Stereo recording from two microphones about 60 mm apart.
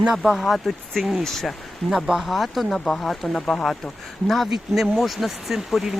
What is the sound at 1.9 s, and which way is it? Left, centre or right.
Speech, centre.